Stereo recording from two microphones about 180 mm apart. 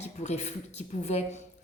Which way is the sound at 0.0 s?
40° left (ahead or behind).